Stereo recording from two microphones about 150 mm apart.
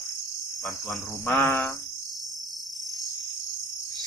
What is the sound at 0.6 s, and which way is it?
Cricket, 10° left (ahead or behind).